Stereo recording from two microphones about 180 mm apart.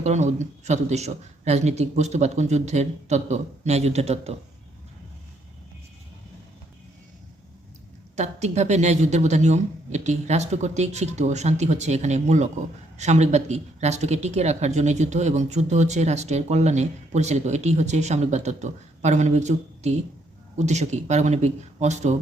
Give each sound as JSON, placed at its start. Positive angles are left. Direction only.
{"t": 0.0, "sound": "speech", "side_deg": -40}
{"t": 8.1, "sound": "speech", "side_deg": -40}